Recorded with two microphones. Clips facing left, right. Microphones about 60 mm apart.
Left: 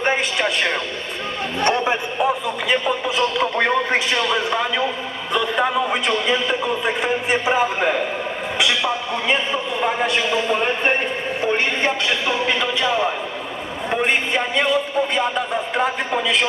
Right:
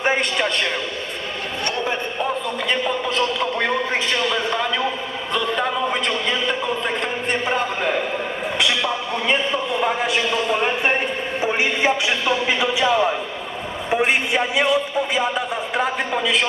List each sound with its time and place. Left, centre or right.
0.0 s a sound: centre
1.6 s a man's voice: left
2.2 s a man's voice: centre
3.6 s a man's voice: left
4.3 s a man's voice: centre